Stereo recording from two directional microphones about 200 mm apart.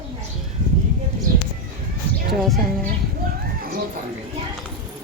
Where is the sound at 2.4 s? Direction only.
Centre (ahead or behind).